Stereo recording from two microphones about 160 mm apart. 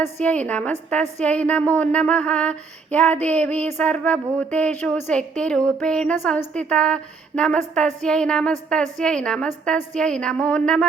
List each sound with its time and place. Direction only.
0.2 s a woman's voice: 10° left (ahead or behind)